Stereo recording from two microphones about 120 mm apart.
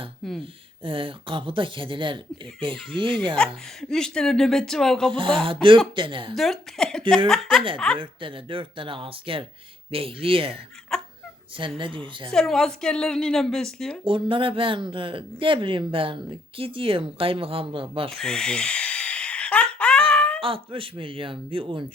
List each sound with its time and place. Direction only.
0.2 s speech: centre (ahead or behind)
0.9 s speech: 50° right (ahead or behind)
3.3 s speech: 5° left (ahead or behind)
5.1 s speech: 45° right (ahead or behind)
6.3 s speech: centre (ahead or behind)
7.9 s speech: 45° right (ahead or behind)
10.9 s a sound: 5° left (ahead or behind)
11.5 s speech: 45° right (ahead or behind)
12.3 s speech: 5° left (ahead or behind)
14.0 s speech: 45° right (ahead or behind)
18.1 s a sound: 5° left (ahead or behind)
20.4 s speech: 45° right (ahead or behind)